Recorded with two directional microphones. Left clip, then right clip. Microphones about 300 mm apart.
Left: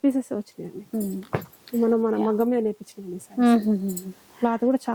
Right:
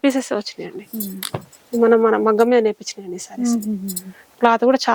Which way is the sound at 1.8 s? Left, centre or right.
Centre.